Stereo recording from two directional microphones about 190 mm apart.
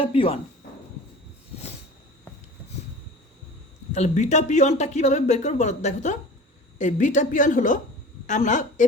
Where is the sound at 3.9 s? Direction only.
35° left (ahead or behind).